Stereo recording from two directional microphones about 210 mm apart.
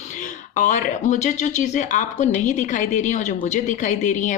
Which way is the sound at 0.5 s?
35° left (ahead or behind).